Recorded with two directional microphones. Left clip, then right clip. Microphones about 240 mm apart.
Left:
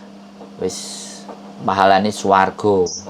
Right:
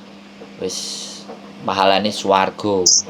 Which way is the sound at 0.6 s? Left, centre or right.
Centre.